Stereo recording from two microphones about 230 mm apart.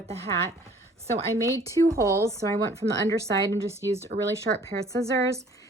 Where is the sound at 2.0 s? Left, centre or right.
Centre.